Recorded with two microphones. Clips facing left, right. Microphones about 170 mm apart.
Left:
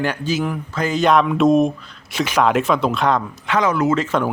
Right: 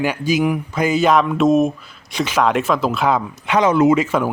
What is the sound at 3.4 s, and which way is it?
Speech, 20° right (ahead or behind).